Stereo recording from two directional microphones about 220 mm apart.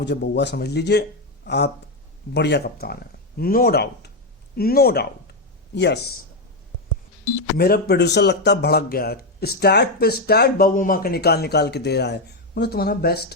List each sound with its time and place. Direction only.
0.0 s speech: 50° left (ahead or behind)
7.5 s speech: 45° left (ahead or behind)